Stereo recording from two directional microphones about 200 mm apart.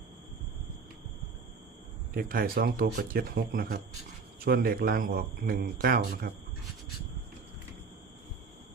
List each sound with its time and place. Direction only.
2.1 s speech: 50° right (ahead or behind)